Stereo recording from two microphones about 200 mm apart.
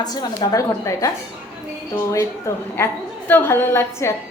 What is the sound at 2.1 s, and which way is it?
A woman's voice, 15° left (ahead or behind).